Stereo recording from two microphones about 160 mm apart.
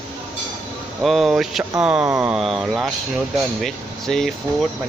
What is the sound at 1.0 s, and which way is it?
Speech, centre (ahead or behind).